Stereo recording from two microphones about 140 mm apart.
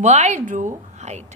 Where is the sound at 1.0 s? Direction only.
55° right (ahead or behind).